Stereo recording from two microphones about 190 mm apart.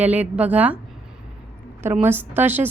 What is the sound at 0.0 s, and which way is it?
Speech, 10° right (ahead or behind).